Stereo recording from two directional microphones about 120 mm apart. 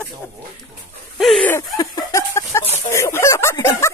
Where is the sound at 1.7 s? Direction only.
30° left (ahead or behind).